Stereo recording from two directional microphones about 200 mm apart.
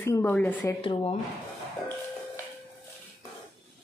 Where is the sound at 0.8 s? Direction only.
25° left (ahead or behind).